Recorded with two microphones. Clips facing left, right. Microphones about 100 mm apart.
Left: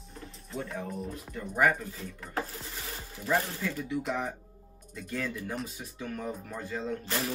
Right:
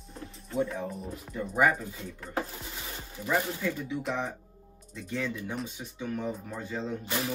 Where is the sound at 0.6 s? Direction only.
Centre (ahead or behind).